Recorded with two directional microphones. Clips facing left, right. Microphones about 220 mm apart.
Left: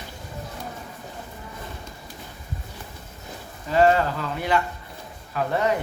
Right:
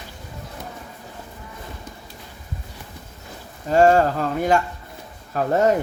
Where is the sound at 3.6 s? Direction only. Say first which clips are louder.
Right 4 dB; 45° right (ahead or behind).